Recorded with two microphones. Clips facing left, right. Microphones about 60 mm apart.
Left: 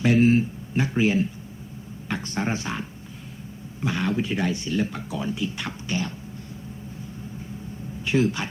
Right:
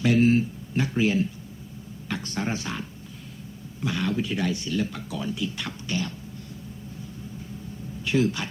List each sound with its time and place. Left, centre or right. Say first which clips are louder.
0.0 s a sound: left 1 dB; left
2.0 s speech: left 2 dB; left
8.0 s speech: left 1 dB; left